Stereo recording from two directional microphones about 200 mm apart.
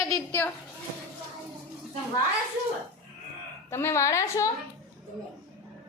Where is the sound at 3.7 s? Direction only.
15° left (ahead or behind).